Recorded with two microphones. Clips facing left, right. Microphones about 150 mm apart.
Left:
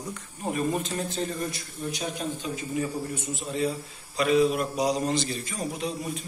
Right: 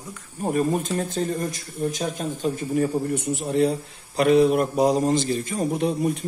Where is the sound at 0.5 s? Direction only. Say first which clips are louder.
Right 5 dB; 45° right (ahead or behind).